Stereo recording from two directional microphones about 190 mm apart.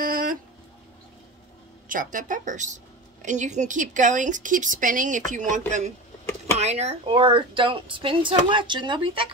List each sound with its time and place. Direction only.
0.0 s dog: 50° right (ahead or behind)
1.9 s a woman's voice: 45° right (ahead or behind)
6.2 s a sound: 15° left (ahead or behind)
6.6 s a woman's voice: 35° right (ahead or behind)